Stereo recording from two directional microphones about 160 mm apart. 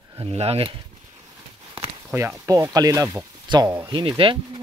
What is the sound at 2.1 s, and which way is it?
Speech, 15° right (ahead or behind).